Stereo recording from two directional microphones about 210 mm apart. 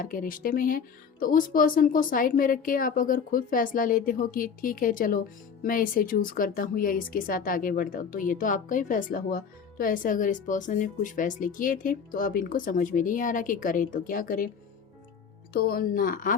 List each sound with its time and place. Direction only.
0.0 s speech: 40° left (ahead or behind)
15.5 s speech: 45° left (ahead or behind)